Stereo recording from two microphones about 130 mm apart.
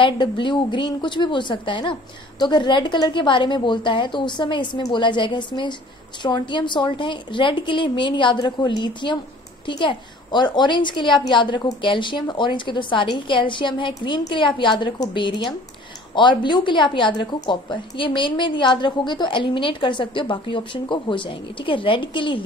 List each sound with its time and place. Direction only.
0.0 s a woman's voice: 40° left (ahead or behind)